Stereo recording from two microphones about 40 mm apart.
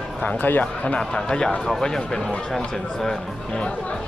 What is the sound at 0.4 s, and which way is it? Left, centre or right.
Speech, left.